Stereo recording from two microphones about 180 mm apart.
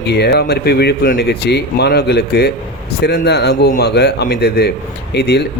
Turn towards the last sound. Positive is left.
turn(degrees=65)  # may be behind; listen again after turning